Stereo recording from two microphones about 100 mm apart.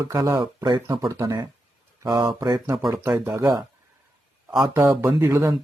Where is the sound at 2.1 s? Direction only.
45° right (ahead or behind).